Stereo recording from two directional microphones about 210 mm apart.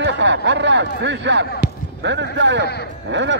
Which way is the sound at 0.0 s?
60° right (ahead or behind).